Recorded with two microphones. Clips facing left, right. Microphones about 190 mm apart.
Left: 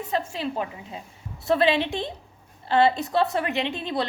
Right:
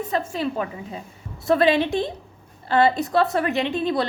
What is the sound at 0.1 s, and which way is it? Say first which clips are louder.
A woman's voice: right 1 dB; 50° right (ahead or behind).